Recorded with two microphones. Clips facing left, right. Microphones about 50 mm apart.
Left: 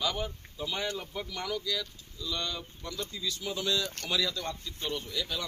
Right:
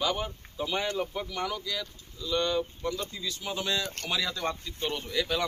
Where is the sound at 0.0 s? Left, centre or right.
Centre.